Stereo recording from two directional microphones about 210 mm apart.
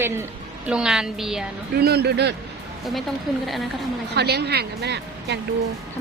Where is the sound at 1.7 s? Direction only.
50° right (ahead or behind).